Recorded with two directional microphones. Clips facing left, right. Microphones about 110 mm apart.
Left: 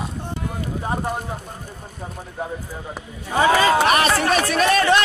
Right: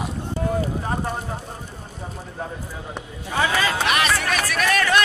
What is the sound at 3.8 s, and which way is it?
Speech, 40° left (ahead or behind).